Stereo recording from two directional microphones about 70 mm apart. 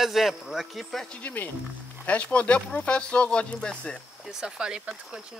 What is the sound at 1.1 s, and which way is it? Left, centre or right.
Speech, centre.